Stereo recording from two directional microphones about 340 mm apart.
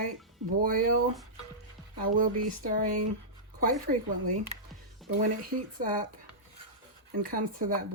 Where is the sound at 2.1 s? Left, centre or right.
Right.